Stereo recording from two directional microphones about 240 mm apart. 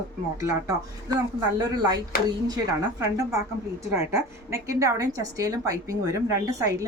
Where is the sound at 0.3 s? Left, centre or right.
Centre.